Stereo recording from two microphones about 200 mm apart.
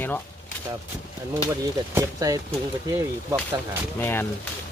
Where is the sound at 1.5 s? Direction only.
15° right (ahead or behind).